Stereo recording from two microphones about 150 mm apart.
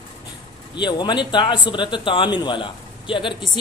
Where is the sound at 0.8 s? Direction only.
30° left (ahead or behind).